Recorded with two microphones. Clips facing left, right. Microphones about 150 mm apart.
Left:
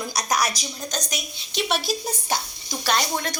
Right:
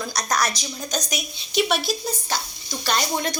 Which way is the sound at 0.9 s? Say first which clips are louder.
Right 5 dB; 10° right (ahead or behind).